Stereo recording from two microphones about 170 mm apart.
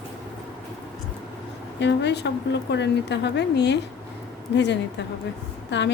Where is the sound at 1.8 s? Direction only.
90° left.